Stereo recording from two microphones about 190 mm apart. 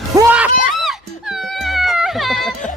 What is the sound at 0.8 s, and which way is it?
Music, centre (ahead or behind).